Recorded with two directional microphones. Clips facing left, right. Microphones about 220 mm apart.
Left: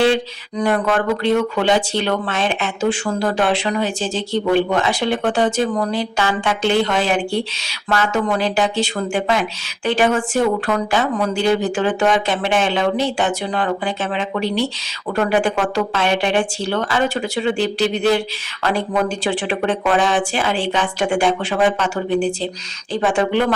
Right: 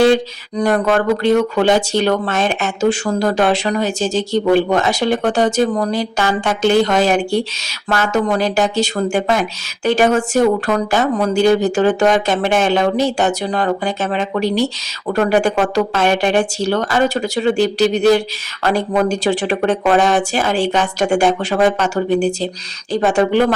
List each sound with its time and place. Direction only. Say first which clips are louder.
0.6 s speech: right 3 dB; 40° right (ahead or behind)